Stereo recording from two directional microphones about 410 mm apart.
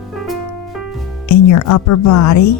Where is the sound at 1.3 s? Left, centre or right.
Left.